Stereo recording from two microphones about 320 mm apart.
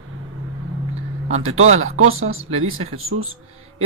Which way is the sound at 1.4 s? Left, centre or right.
Right.